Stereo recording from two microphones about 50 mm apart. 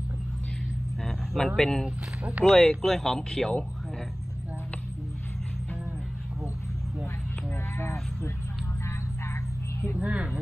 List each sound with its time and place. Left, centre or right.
1.0 s a sound: centre
1.6 s speech: centre
7.8 s livestock: left
9.9 s speech: right